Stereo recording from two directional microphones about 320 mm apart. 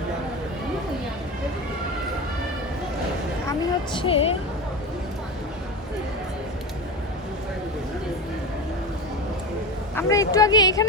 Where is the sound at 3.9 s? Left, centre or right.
Centre.